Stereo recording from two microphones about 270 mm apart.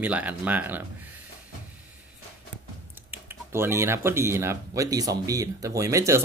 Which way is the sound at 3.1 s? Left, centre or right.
Centre.